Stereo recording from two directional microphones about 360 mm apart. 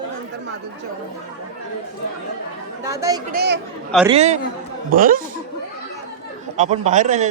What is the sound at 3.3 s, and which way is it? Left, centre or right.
A man's voice, right.